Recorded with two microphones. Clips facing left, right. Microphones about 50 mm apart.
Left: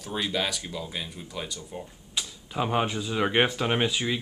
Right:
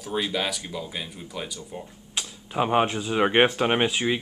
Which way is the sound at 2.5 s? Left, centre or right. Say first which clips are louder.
Right 4 dB; centre.